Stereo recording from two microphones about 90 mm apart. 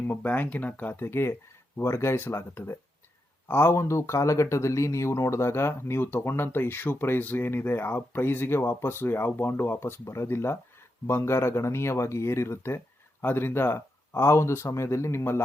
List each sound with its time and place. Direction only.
0.1 s speech: 20° left (ahead or behind)